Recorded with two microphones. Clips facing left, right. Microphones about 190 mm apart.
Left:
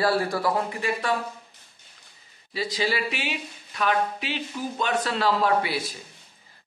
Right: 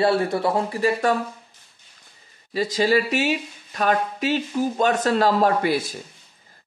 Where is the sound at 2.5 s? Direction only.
45° right (ahead or behind).